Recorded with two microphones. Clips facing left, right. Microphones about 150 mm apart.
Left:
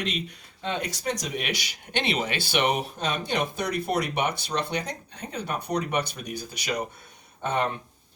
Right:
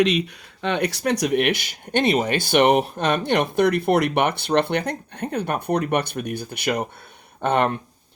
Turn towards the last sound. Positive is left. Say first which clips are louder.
# right 7 dB
turn(degrees=-60)  # may be behind; listen again after turning